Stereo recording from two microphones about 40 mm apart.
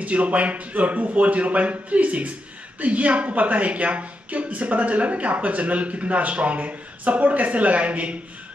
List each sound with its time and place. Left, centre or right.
0.0 s speech: right